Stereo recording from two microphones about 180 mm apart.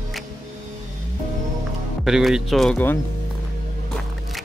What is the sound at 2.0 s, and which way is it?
Speech, centre (ahead or behind).